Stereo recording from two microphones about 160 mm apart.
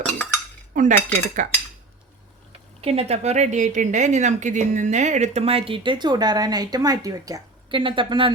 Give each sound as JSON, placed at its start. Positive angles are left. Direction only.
{"t": 0.7, "sound": "cutlery", "side_deg": -55}
{"t": 2.8, "sound": "speech", "side_deg": -40}